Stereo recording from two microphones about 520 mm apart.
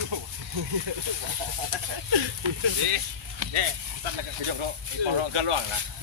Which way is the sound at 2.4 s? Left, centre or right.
Right.